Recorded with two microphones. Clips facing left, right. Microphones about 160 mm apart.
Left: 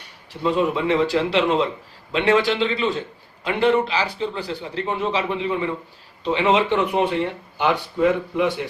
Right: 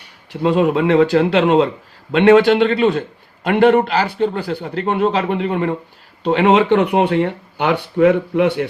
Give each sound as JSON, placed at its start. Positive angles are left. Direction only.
{"t": 0.4, "sound": "speech", "side_deg": -65}